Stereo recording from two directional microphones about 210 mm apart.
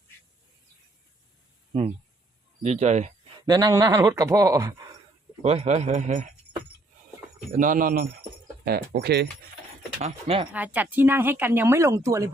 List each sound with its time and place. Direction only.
1.7 s a man's voice: 35° right (ahead or behind)
3.4 s speech: 20° right (ahead or behind)
5.4 s a man's voice: 30° right (ahead or behind)
7.5 s a man's voice: 40° right (ahead or behind)
10.0 s speech: 30° right (ahead or behind)
10.5 s speech: 10° right (ahead or behind)